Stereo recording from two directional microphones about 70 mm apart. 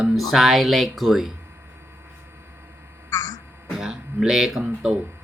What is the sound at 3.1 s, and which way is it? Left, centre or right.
Music, left.